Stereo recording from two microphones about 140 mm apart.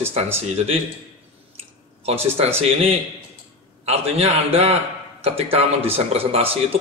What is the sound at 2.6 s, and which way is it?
Speech, 45° right (ahead or behind).